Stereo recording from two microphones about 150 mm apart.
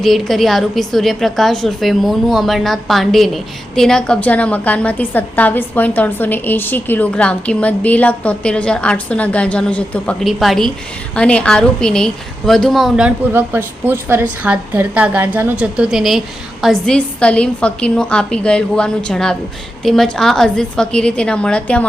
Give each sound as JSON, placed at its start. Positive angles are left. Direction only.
{"t": 0.0, "sound": "a woman's voice", "side_deg": 0}